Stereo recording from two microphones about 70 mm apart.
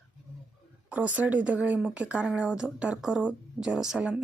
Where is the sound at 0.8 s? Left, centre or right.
Right.